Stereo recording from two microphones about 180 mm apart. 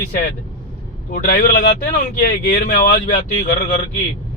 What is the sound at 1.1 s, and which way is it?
Speech, 50° left (ahead or behind).